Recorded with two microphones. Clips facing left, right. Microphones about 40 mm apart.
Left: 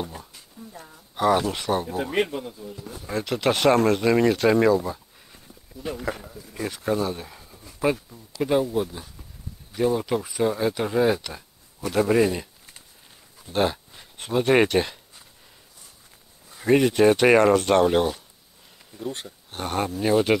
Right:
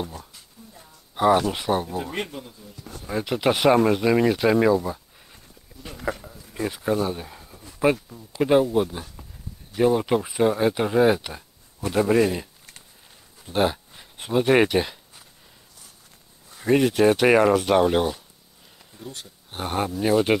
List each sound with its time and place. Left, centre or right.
0.6 s a sound: left
1.1 s speech: centre
1.9 s speech: centre
2.8 s speech: centre
3.2 s speech: centre
11.9 s speech: centre
13.5 s a sound: centre
16.4 s speech: centre
19.5 s speech: centre